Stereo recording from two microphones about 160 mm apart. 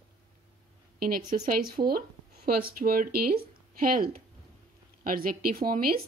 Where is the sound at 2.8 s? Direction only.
65° right (ahead or behind).